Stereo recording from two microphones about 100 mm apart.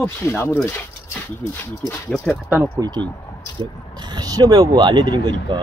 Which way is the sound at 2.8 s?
35° right (ahead or behind).